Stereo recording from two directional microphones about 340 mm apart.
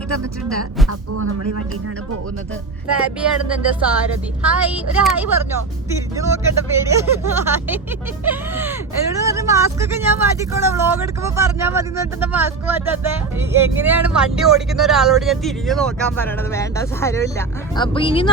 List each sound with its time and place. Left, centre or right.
0.9 s speech: right
3.2 s speech: centre